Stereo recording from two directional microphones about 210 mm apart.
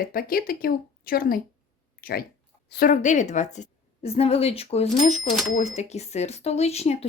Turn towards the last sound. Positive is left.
turn(degrees=30)  # may be behind; listen again after turning